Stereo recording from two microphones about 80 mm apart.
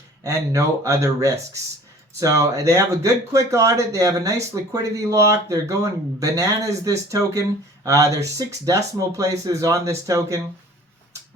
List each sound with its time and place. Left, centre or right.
0.2 s speech: right